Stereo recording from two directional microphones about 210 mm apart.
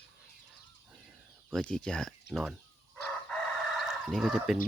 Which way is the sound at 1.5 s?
5° left (ahead or behind).